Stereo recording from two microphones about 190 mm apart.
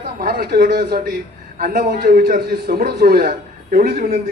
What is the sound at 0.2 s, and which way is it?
A man's voice, 50° right (ahead or behind).